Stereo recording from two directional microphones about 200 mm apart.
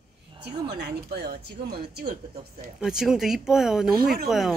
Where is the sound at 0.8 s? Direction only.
55° right (ahead or behind).